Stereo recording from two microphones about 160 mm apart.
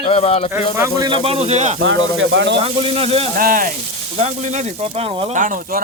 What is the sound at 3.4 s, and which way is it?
Speech, 60° right (ahead or behind).